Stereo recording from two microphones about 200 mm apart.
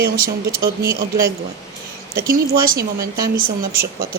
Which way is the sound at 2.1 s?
50° right (ahead or behind).